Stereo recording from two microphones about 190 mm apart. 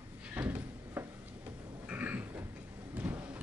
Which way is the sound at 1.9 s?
10° right (ahead or behind).